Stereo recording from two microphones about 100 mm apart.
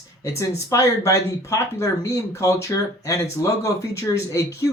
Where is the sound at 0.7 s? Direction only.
30° left (ahead or behind).